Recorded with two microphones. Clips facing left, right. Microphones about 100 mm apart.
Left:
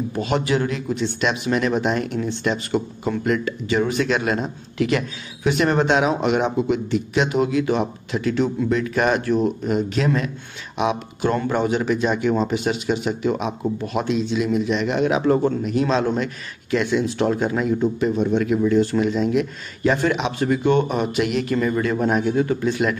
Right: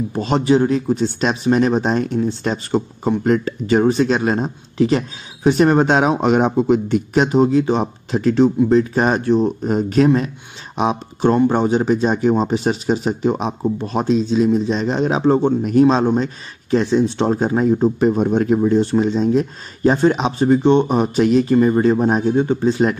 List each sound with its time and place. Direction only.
0.1 s speech: 30° right (ahead or behind)
15.6 s speech: 40° right (ahead or behind)